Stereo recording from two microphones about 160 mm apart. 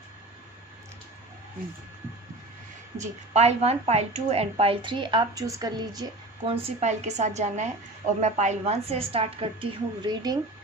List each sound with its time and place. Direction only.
3.0 s a woman's voice: 40° right (ahead or behind); by 6.5 s 25° right (ahead or behind)
6.5 s a woman's voice: 40° right (ahead or behind)